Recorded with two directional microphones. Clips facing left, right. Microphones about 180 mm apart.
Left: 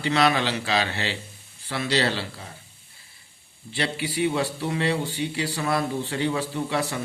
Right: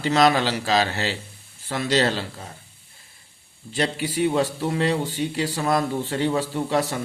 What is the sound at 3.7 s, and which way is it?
A man's voice, 45° right (ahead or behind).